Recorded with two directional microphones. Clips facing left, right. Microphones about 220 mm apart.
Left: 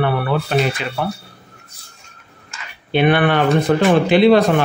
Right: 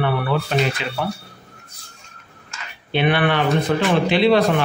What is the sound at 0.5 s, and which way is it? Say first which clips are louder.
Speech: left 3 dB; 50° left (ahead or behind).